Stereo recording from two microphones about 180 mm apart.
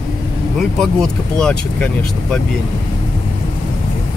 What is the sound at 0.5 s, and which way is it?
Speech, 5° left (ahead or behind).